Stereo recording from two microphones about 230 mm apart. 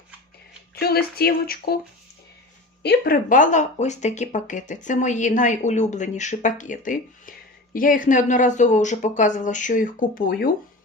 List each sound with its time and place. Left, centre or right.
0.8 s speech: left
2.8 s speech: left